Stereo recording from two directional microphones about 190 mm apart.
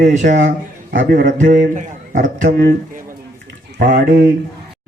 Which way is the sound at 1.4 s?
65° right (ahead or behind).